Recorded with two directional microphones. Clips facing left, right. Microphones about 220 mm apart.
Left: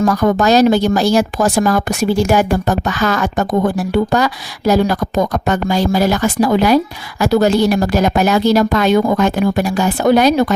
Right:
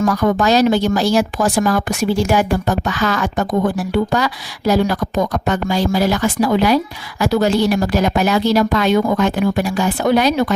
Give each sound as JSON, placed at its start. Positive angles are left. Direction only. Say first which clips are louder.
{"t": 0.0, "sound": "speech", "louder": "left 2 dB", "side_deg": 45}